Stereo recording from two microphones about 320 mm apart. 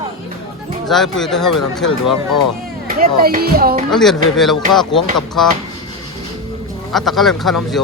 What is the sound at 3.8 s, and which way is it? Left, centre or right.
Speech, centre.